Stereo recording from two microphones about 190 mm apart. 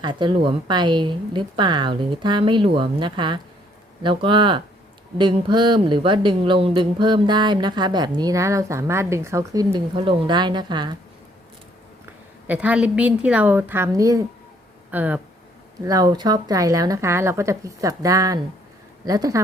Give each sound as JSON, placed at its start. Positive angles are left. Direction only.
{"t": 0.0, "sound": "speech", "side_deg": -25}
{"t": 12.5, "sound": "speech", "side_deg": -5}
{"t": 15.9, "sound": "speech", "side_deg": -20}